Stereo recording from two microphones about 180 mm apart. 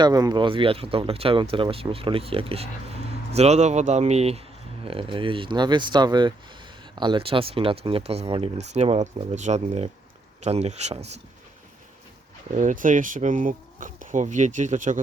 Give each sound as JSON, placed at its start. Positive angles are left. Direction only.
{"t": 0.0, "sound": "speech", "side_deg": -20}
{"t": 12.5, "sound": "speech", "side_deg": -45}